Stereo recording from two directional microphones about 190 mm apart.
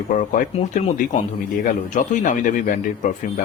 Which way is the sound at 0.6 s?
30° left (ahead or behind).